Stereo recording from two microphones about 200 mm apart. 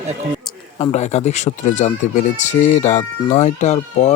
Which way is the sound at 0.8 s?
35° left (ahead or behind).